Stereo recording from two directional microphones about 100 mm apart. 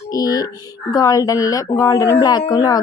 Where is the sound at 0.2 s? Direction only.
40° left (ahead or behind).